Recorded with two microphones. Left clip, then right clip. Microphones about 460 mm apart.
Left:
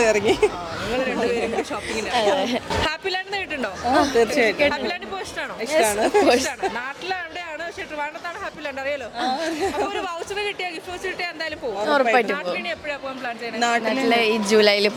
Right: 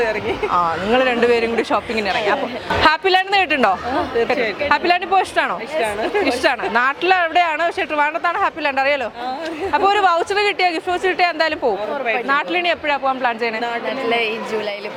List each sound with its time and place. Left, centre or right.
0.9 s speech: right
3.9 s speech: left
4.7 s speech: right
5.7 s speech: left
6.4 s speech: right
9.9 s speech: right
11.9 s speech: left
12.3 s speech: right
14.1 s a woman's voice: left